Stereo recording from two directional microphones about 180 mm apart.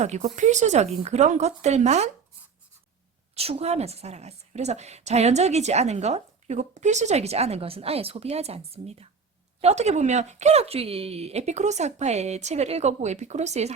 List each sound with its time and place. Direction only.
0.0 s a woman's voice: 40° right (ahead or behind)
3.3 s a woman's voice: 35° right (ahead or behind)